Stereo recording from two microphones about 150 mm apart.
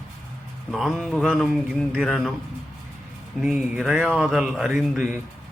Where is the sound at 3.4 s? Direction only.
5° right (ahead or behind).